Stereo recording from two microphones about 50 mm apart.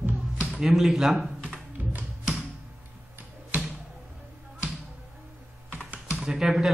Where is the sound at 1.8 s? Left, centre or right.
Right.